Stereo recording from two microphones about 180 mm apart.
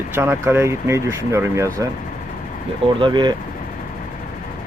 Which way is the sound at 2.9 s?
25° right (ahead or behind).